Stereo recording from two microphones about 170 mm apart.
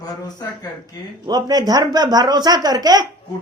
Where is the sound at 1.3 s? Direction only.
25° right (ahead or behind).